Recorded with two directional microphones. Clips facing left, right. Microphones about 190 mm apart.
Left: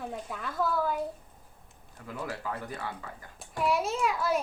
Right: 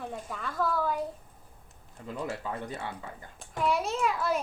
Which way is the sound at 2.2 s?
25° right (ahead or behind).